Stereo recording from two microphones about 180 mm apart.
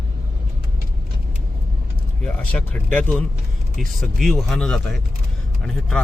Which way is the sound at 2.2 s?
5° left (ahead or behind).